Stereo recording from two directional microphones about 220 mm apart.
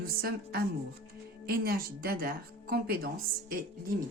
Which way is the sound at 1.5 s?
45° right (ahead or behind).